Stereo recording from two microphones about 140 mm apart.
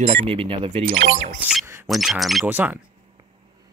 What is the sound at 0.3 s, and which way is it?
Speech, 40° right (ahead or behind).